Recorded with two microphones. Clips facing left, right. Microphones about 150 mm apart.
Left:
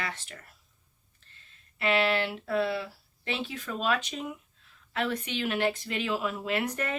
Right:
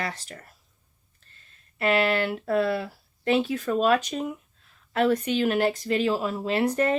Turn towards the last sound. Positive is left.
turn(degrees=-35)  # may be behind; listen again after turning